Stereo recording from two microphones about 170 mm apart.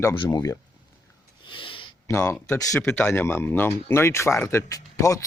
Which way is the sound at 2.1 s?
15° left (ahead or behind).